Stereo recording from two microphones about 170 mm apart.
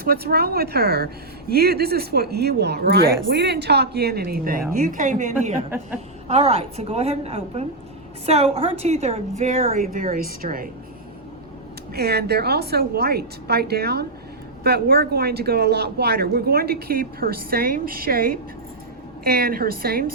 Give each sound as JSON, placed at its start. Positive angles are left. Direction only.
{"t": 0.0, "sound": "a woman's voice", "side_deg": -65}
{"t": 11.9, "sound": "a woman's voice", "side_deg": -70}